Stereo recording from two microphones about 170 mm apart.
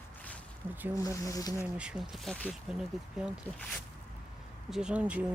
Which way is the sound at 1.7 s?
5° right (ahead or behind).